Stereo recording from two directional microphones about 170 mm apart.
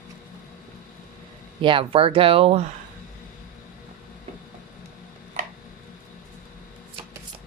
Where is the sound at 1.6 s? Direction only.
30° right (ahead or behind).